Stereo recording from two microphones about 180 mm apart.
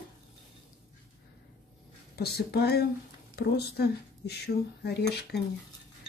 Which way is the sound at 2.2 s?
60° left (ahead or behind).